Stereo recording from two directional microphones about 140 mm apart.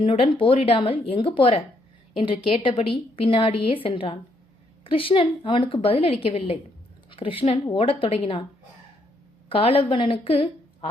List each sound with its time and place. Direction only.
0.0 s a woman's voice: 40° left (ahead or behind)
9.5 s a woman's voice: 40° left (ahead or behind)